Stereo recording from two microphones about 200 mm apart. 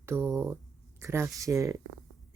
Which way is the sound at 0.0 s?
10° right (ahead or behind).